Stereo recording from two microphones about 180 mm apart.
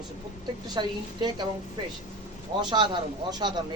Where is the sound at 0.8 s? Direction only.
25° right (ahead or behind).